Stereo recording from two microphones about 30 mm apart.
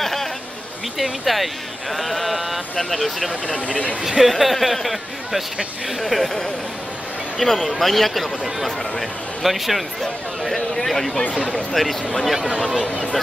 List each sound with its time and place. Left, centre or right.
0.0 s a sound: centre
1.2 s speech: centre
2.8 s speech: centre
4.0 s speech: centre
4.3 s speech: centre
5.9 s speech: centre
7.3 s speech: centre
12.8 s speech: left